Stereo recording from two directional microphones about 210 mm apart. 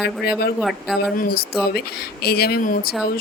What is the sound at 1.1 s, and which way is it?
Speech, 45° left (ahead or behind).